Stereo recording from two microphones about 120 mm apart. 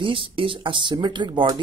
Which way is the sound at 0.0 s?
45° right (ahead or behind).